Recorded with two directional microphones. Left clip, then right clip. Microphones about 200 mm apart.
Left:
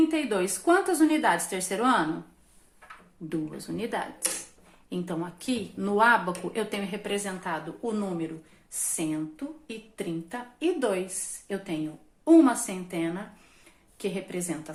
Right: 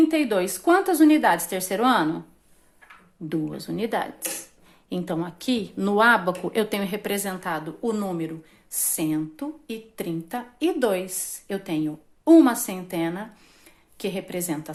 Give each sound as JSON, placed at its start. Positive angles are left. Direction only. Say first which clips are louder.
{"t": 0.1, "sound": "a woman's voice", "louder": "right 5 dB", "side_deg": -35}
{"t": 3.2, "sound": "a woman's voice", "louder": "right 5 dB", "side_deg": -40}